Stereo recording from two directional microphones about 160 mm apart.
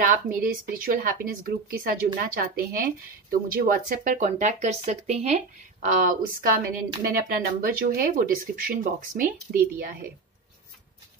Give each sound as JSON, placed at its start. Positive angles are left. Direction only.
{"t": 0.0, "sound": "speech", "side_deg": -60}